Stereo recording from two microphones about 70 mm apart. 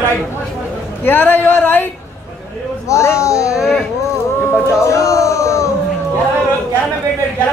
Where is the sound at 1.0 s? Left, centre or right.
Left.